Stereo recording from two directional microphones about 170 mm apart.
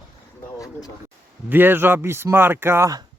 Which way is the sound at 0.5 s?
20° left (ahead or behind).